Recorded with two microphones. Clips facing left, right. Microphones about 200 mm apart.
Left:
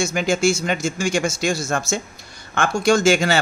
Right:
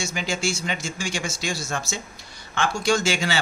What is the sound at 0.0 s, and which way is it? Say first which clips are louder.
Speech: left 8 dB; 50° left (ahead or behind).